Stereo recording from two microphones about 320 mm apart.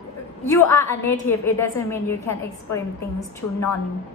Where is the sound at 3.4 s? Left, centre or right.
Left.